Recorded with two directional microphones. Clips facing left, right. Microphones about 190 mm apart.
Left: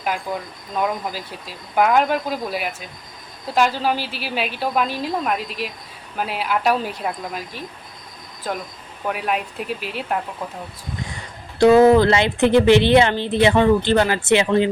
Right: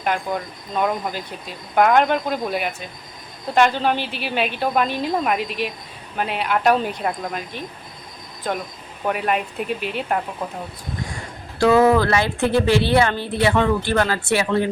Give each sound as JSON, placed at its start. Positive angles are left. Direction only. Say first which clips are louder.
{"t": 0.0, "sound": "speech", "louder": "right 2 dB", "side_deg": 5}
{"t": 9.0, "sound": "speech", "louder": "right 2 dB", "side_deg": 0}
{"t": 11.6, "sound": "speech", "louder": "left 3 dB", "side_deg": 20}